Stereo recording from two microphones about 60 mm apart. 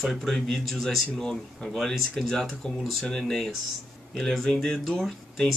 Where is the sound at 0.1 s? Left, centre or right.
Centre.